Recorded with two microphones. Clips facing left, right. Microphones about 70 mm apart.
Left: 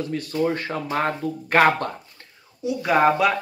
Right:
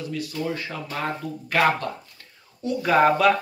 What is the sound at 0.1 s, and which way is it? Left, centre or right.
Speech, left.